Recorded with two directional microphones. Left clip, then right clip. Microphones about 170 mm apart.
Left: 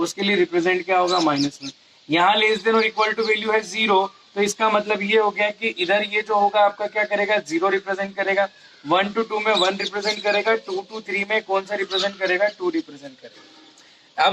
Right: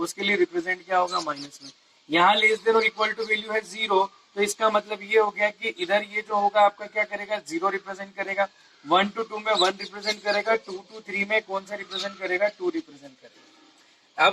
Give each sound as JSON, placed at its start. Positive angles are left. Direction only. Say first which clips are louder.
{"t": 0.0, "sound": "a man's voice", "louder": "left 3 dB", "side_deg": 25}